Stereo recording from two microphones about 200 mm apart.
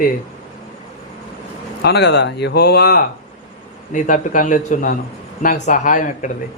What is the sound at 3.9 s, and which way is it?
A man's voice, 40° left (ahead or behind).